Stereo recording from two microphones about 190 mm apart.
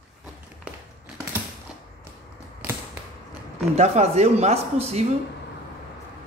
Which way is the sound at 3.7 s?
35° right (ahead or behind).